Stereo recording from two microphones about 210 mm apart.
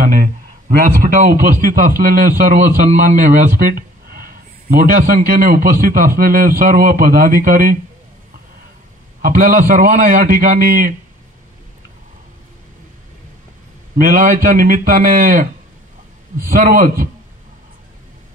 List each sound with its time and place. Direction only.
0.0 s speech: 45° right (ahead or behind)
9.2 s speech: 45° right (ahead or behind)
13.9 s speech: 40° right (ahead or behind)
16.4 s speech: 45° right (ahead or behind)